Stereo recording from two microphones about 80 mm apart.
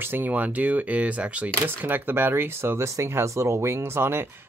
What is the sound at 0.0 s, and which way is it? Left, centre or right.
Speech, right.